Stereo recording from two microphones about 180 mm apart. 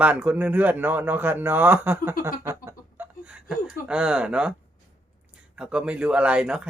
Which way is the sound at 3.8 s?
5° right (ahead or behind).